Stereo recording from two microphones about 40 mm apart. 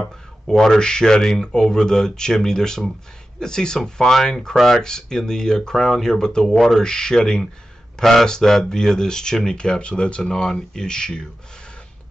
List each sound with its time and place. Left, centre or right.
0.5 s speech: centre
4.8 s speech: centre
6.4 s speech: centre
6.8 s speech: centre
8.0 s speech: centre; by 10.2 s left
10.2 s speech: centre